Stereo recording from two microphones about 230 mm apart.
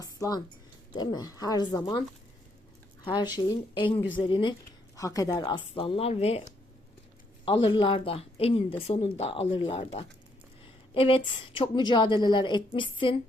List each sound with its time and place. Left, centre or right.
0.0 s a sound: centre
0.9 s a woman's voice: centre
3.0 s speech: centre